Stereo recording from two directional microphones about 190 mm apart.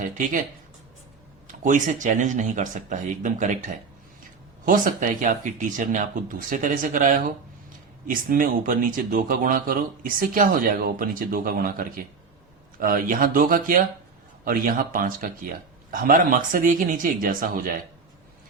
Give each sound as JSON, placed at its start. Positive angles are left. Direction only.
{"t": 0.0, "sound": "speech", "side_deg": -45}
{"t": 1.5, "sound": "speech", "side_deg": -40}
{"t": 4.6, "sound": "speech", "side_deg": -45}